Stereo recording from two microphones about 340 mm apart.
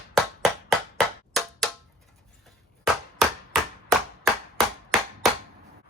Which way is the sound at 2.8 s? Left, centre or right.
Centre.